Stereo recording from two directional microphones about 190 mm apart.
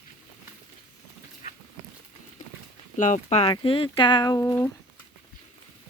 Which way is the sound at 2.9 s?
40° left (ahead or behind).